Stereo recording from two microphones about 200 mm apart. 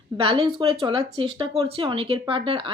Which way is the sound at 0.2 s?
25° right (ahead or behind).